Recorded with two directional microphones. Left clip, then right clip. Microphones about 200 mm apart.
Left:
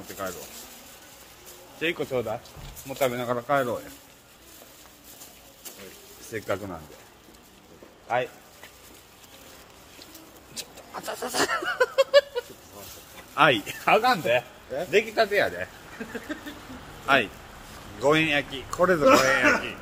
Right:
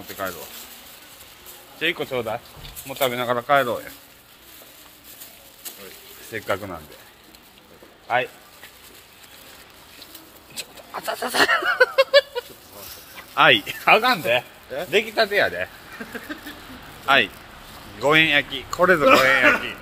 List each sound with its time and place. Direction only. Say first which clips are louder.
0.1 s speech: right 4 dB; 25° right (ahead or behind)
1.8 s speech: right 3 dB; centre (ahead or behind)
6.3 s speech: right 4 dB; 5° right (ahead or behind)
10.5 s a sound: right 5 dB; 10° right (ahead or behind)
13.3 s speech: right 5 dB; 15° right (ahead or behind)
17.0 s speech: right 4 dB; 15° right (ahead or behind)